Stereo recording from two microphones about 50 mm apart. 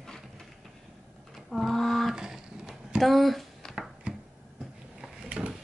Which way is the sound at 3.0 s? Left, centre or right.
Centre.